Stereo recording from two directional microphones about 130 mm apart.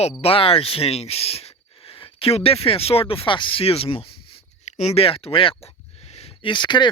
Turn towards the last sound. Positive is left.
turn(degrees=35)  # may be behind; listen again after turning